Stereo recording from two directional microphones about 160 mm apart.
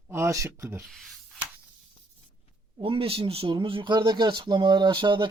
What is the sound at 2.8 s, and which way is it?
A man's voice, 35° right (ahead or behind).